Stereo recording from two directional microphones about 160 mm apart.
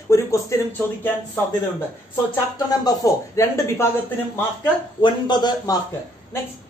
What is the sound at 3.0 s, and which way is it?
Speech, 20° left (ahead or behind).